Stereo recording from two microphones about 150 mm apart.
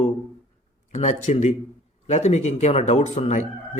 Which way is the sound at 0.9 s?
50° left (ahead or behind).